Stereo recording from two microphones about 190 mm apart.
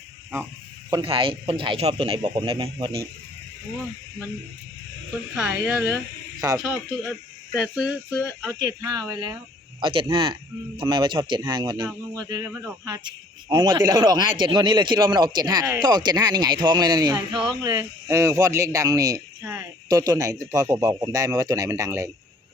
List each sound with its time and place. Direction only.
0.9 s speech: 25° right (ahead or behind)
5.4 s a man's voice: 5° right (ahead or behind)
7.5 s speech: 5° right (ahead or behind)
8.4 s a man's voice: 20° right (ahead or behind)